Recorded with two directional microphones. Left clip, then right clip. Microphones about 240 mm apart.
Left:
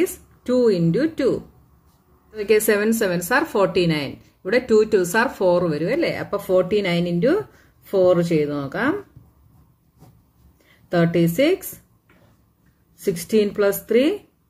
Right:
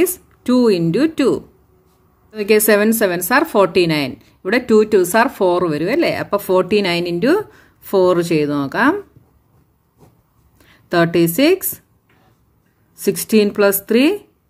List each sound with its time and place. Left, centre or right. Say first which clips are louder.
0.0 s speech: right 6 dB; right
2.3 s speech: right 5 dB; right
10.7 s speech: right 5 dB; right
12.9 s speech: right 4 dB; right